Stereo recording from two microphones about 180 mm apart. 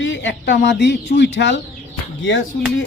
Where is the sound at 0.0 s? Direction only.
90° left.